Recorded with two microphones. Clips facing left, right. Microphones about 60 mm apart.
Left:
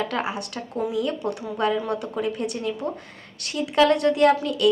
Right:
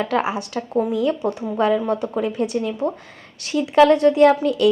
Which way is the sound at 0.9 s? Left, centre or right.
Right.